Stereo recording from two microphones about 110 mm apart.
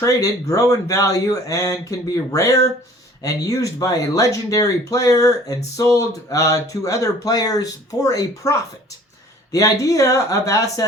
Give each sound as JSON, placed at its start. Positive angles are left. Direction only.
{"t": 0.0, "sound": "speech", "side_deg": 30}